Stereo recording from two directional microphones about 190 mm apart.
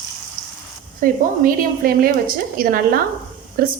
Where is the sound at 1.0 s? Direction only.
50° right (ahead or behind).